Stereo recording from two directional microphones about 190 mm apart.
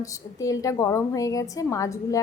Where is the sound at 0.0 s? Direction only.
15° left (ahead or behind).